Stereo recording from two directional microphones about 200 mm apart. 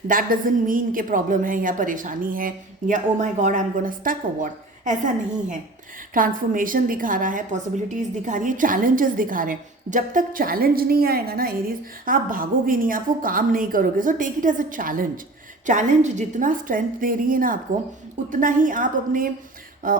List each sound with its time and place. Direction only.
0.1 s a woman's voice: 45° right (ahead or behind)